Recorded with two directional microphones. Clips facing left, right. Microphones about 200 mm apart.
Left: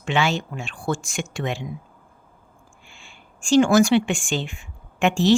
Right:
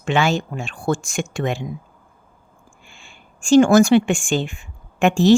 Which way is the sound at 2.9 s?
45° right (ahead or behind).